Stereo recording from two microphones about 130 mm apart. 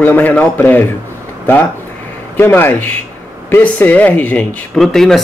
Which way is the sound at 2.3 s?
15° left (ahead or behind).